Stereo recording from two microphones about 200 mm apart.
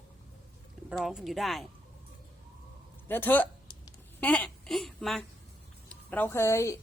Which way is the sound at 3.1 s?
10° left (ahead or behind).